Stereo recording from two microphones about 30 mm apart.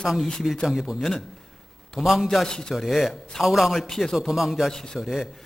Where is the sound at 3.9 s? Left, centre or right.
Centre.